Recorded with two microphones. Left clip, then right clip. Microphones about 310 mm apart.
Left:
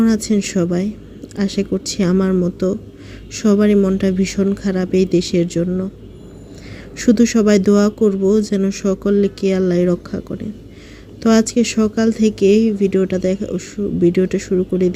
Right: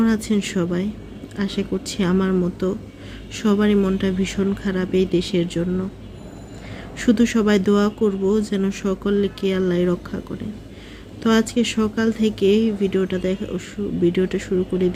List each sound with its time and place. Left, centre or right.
0.0 s speech: centre
6.9 s speech: centre